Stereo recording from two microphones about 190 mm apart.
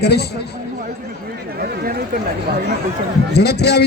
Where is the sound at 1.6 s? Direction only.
50° right (ahead or behind).